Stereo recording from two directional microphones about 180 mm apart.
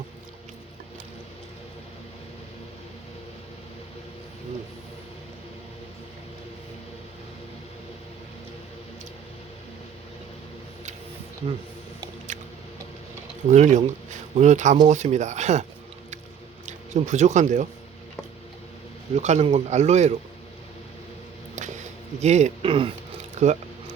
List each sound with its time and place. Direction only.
12.3 s squish: 45° right (ahead or behind)
13.5 s a man's voice: 40° right (ahead or behind)
16.6 s speech: 40° right (ahead or behind)
19.1 s a man's voice: 40° right (ahead or behind)
22.2 s a man's voice: 40° right (ahead or behind)
23.4 s a man's voice: 40° right (ahead or behind)